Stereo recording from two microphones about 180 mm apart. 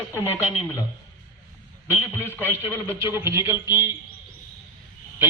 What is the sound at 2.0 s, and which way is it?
Speech, 10° left (ahead or behind).